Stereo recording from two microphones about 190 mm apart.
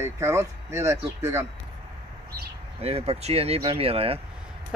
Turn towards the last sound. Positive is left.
turn(degrees=-30)  # may be behind; listen again after turning